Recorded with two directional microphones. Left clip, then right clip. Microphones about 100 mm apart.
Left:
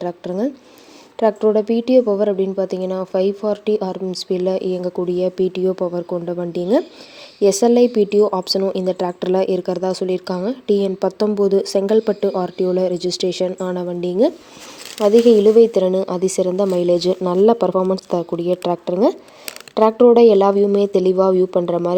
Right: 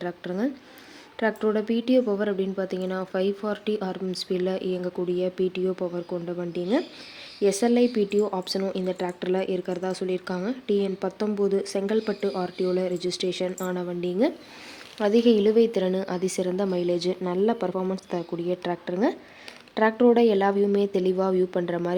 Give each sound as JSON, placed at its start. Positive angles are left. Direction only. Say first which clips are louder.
{"t": 0.0, "sound": "speech", "louder": "left 7 dB", "side_deg": 45}
{"t": 5.0, "sound": "speech", "louder": "left 7 dB", "side_deg": 65}
{"t": 6.6, "sound": "speech", "louder": "left 7 dB", "side_deg": 90}
{"t": 7.4, "sound": "speech", "louder": "left 9 dB", "side_deg": 60}
{"t": 15.0, "sound": "speech", "louder": "left 9 dB", "side_deg": 40}
{"t": 16.7, "sound": "speech", "louder": "left 9 dB", "side_deg": 60}
{"t": 17.6, "sound": "speech", "louder": "left 11 dB", "side_deg": 65}
{"t": 19.7, "sound": "speech", "louder": "left 9 dB", "side_deg": 55}